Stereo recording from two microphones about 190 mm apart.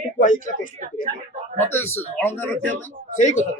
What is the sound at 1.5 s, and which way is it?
Speech, 10° left (ahead or behind).